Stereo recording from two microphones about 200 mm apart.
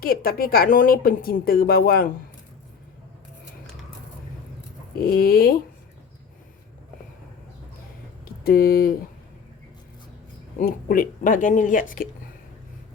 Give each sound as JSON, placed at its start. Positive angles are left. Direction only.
{"t": 0.0, "sound": "speech", "side_deg": 50}
{"t": 5.0, "sound": "speech", "side_deg": 50}
{"t": 8.2, "sound": "speech", "side_deg": 45}
{"t": 10.6, "sound": "speech", "side_deg": 45}